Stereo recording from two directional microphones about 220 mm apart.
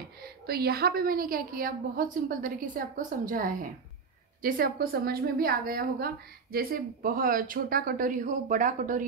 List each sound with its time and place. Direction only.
0.2 s a woman's voice: 45° right (ahead or behind)